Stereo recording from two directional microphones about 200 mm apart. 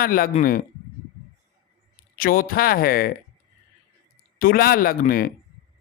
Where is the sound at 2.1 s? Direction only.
45° left (ahead or behind).